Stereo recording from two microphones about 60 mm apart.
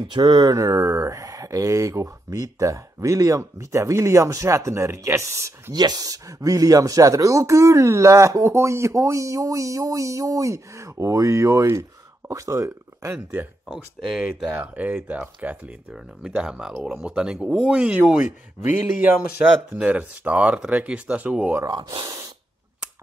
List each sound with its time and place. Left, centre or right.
0.5 s speech: right
5.9 s speech: right
13.1 s speech: right
13.7 s speech: centre
14.5 s speech: right
15.9 s speech: centre
18.1 s speech: right